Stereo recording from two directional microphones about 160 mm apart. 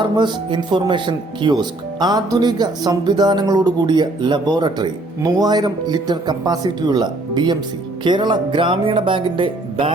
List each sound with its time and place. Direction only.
0.0 s speech: 30° right (ahead or behind)